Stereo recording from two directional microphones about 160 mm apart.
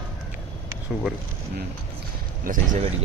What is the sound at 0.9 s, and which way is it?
Speech, 5° right (ahead or behind).